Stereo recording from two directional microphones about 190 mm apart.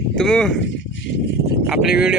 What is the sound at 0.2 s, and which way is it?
Speech, 5° left (ahead or behind).